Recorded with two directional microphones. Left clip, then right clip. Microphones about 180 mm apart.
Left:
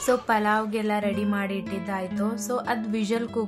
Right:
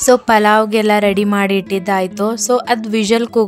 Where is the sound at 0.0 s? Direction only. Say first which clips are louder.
Right 12 dB; 50° right (ahead or behind).